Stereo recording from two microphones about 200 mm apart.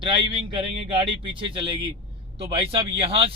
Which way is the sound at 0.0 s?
25° right (ahead or behind).